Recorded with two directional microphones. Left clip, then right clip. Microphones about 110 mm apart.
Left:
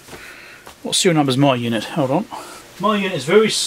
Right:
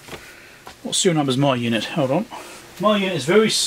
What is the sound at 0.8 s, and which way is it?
Speech, 35° left (ahead or behind).